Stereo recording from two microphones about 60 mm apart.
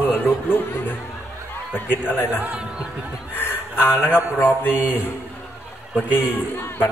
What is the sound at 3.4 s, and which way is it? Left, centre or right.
Speech, left.